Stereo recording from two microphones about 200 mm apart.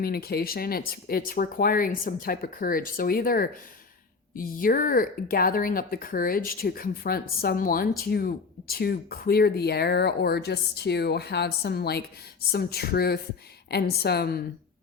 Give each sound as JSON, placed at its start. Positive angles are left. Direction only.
{"t": 0.0, "sound": "speech", "side_deg": 50}